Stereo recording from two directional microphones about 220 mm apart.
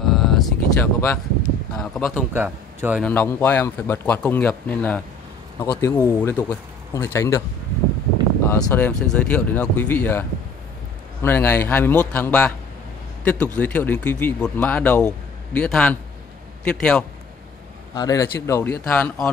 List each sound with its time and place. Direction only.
0.0 s vehicle: centre (ahead or behind)
0.7 s speech: 10° left (ahead or behind)
2.1 s a man's voice: 10° right (ahead or behind)
3.0 s speech: 5° left (ahead or behind)
8.5 s speech: 5° left (ahead or behind)
11.2 s a man's voice: 10° left (ahead or behind)
17.9 s speech: 15° left (ahead or behind)